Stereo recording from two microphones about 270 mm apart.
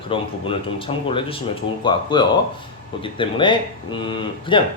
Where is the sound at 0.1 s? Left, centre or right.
Centre.